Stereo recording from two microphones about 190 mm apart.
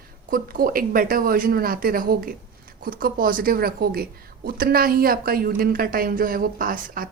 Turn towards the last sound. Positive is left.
turn(degrees=-50)  # may be behind; listen again after turning